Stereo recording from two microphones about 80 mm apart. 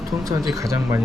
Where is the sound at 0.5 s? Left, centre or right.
Right.